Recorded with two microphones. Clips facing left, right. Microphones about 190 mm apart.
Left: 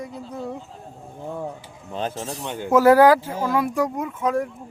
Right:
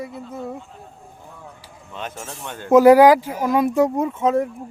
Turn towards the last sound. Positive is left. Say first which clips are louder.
# right 4 dB
turn(degrees=-25)  # may be behind; listen again after turning